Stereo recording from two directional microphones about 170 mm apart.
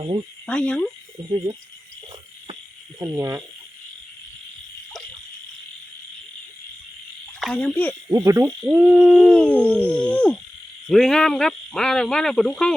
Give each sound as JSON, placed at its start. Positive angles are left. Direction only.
{"t": 0.4, "sound": "speech", "side_deg": 5}
{"t": 3.0, "sound": "frog", "side_deg": -15}
{"t": 7.3, "sound": "frog", "side_deg": 5}
{"t": 8.1, "sound": "frog", "side_deg": -15}
{"t": 8.6, "sound": "speech", "side_deg": -5}
{"t": 9.3, "sound": "a sound", "side_deg": 10}
{"t": 10.8, "sound": "speech", "side_deg": 0}